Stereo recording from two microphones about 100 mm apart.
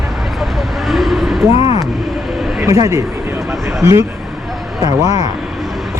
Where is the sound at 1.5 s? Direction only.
75° left (ahead or behind).